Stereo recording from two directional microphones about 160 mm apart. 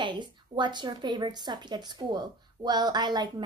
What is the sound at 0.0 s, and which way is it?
Speech, 30° right (ahead or behind).